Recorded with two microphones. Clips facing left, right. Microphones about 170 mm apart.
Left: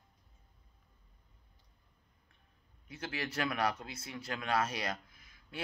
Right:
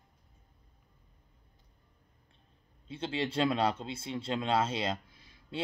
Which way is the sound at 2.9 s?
25° right (ahead or behind).